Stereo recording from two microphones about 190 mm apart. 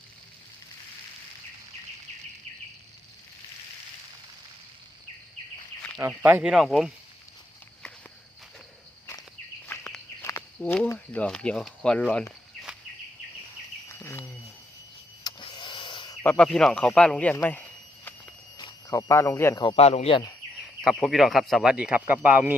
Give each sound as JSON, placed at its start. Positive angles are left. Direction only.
{"t": 6.0, "sound": "speech", "side_deg": -10}
{"t": 9.6, "sound": "bird", "side_deg": 5}
{"t": 10.2, "sound": "a sound", "side_deg": 10}
{"t": 13.8, "sound": "bird", "side_deg": 15}
{"t": 15.2, "sound": "a sound", "side_deg": 25}
{"t": 16.2, "sound": "speech", "side_deg": 5}
{"t": 18.5, "sound": "speech", "side_deg": 20}
{"t": 19.6, "sound": "a man's voice", "side_deg": 30}
{"t": 20.8, "sound": "speech", "side_deg": 0}